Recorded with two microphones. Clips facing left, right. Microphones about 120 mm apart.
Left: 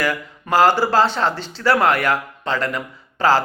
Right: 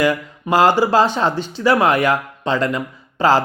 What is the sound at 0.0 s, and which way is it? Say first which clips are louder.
Speech: right 5 dB; 15° right (ahead or behind).